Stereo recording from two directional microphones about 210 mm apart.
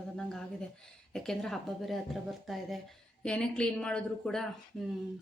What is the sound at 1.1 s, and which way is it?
Speech, centre (ahead or behind).